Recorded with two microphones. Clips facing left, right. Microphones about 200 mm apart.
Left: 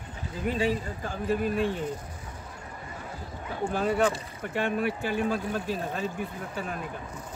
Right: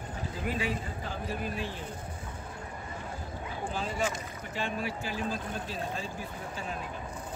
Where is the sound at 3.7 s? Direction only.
60° left (ahead or behind).